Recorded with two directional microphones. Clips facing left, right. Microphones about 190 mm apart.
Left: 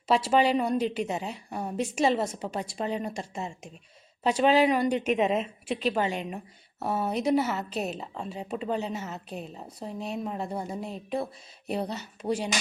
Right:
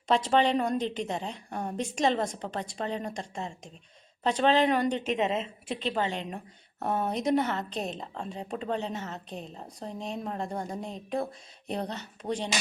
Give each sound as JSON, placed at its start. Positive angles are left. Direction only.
{"t": 0.1, "sound": "a woman's voice", "side_deg": 5}